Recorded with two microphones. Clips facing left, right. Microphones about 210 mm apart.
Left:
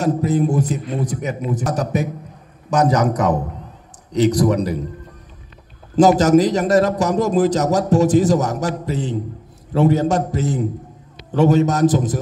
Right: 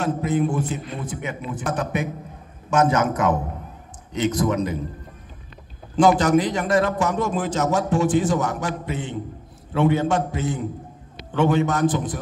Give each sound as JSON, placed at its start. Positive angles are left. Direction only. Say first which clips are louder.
{"t": 0.0, "sound": "a man's voice", "louder": "left 4 dB", "side_deg": 40}
{"t": 5.9, "sound": "a man's voice", "louder": "left 5 dB", "side_deg": 40}